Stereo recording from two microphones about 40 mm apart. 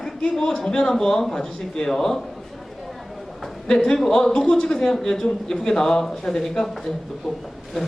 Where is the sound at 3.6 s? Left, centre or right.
Centre.